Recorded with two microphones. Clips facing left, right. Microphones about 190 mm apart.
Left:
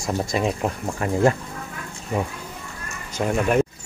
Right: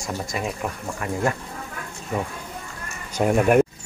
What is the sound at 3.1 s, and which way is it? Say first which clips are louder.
Speech: right 3 dB; 15° right (ahead or behind).